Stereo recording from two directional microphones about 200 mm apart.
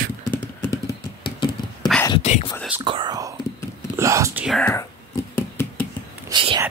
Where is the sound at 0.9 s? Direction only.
25° left (ahead or behind).